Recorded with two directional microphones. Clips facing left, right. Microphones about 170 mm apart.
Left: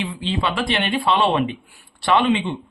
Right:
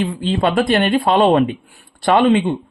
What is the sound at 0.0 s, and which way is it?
Speech, 45° right (ahead or behind).